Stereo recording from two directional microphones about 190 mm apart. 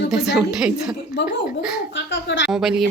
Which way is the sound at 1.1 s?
65° left (ahead or behind).